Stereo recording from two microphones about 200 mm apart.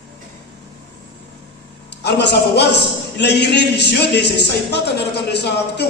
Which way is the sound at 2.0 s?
55° left (ahead or behind).